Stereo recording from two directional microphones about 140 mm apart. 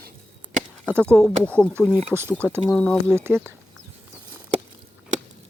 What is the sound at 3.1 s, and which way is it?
Speech, 15° right (ahead or behind).